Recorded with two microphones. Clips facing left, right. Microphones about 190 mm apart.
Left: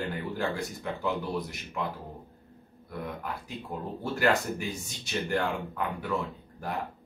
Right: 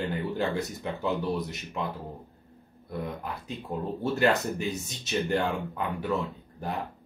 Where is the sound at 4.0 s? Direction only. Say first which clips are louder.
Right 2 dB; 25° right (ahead or behind).